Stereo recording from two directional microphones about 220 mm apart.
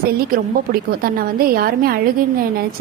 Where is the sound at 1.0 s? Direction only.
45° right (ahead or behind).